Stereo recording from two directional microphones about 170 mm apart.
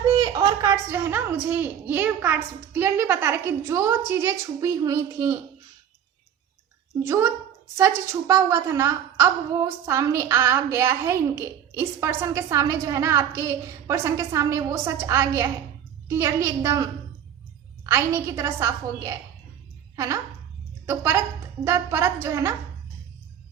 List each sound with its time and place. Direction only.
0.2 s a woman's voice: 20° right (ahead or behind)
7.0 s a woman's voice: 15° right (ahead or behind)
20.8 s a woman's voice: 15° right (ahead or behind)